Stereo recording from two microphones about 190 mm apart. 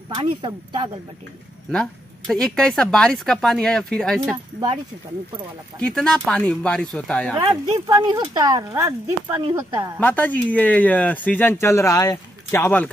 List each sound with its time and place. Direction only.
0.1 s speech: 25° right (ahead or behind)
1.7 s speech: 5° left (ahead or behind)
5.8 s speech: 5° left (ahead or behind)
7.3 s speech: 20° right (ahead or behind)
9.9 s speech: 10° left (ahead or behind)